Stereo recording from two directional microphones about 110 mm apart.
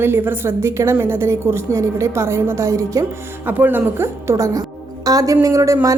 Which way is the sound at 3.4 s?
15° right (ahead or behind).